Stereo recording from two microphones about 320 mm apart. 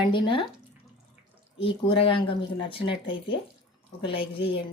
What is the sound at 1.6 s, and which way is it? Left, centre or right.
Speech, centre.